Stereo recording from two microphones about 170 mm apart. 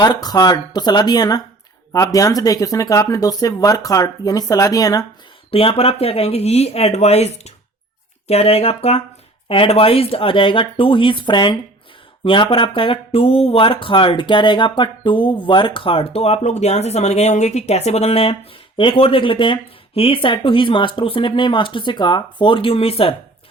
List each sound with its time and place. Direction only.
0.0 s speech: 25° left (ahead or behind)
5.5 s speech: 35° left (ahead or behind)